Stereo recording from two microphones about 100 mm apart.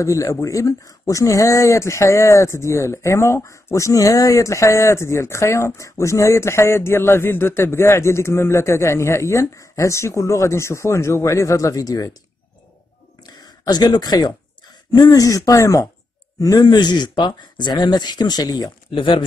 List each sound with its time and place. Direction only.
0.0 s speech: 30° left (ahead or behind)
13.2 s a sound: 45° left (ahead or behind)
14.9 s speech: 35° left (ahead or behind)
18.9 s speech: 55° left (ahead or behind)